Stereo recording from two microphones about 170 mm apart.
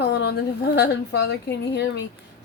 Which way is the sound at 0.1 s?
75° left (ahead or behind).